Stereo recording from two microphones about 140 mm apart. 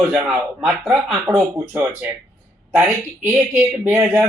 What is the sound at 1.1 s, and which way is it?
Speech, 15° right (ahead or behind).